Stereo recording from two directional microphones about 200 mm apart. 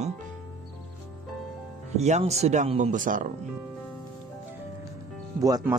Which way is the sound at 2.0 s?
35° right (ahead or behind).